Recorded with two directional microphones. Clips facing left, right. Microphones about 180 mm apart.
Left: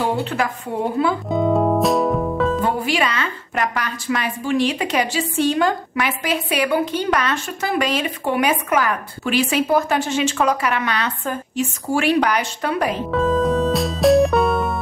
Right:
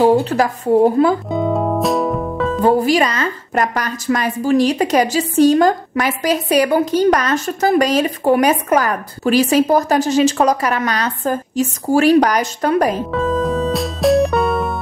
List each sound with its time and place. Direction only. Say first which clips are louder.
0.0 s speech: right 8 dB; 40° right (ahead or behind)
1.3 s music: even; centre (ahead or behind)
2.6 s speech: right 7 dB; 40° right (ahead or behind)
13.1 s music: even; centre (ahead or behind)